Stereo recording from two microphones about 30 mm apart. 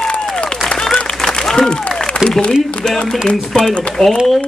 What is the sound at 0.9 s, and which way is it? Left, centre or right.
Applause, left.